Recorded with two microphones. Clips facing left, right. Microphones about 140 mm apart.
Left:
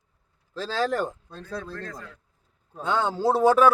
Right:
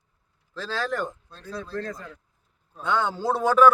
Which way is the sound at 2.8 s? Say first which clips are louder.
Even; 35° left (ahead or behind).